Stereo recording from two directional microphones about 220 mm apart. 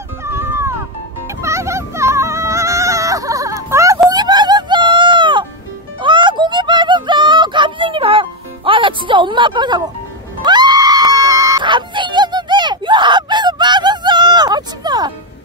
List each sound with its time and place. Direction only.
0.2 s a sound: 10° right (ahead or behind)
5.9 s music: 20° right (ahead or behind)
10.4 s screaming: 20° right (ahead or behind)